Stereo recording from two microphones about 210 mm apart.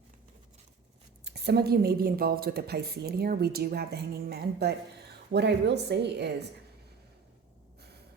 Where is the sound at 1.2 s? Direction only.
50° right (ahead or behind).